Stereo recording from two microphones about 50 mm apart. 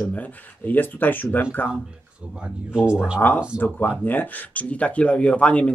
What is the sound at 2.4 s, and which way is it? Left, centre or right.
Speech, right.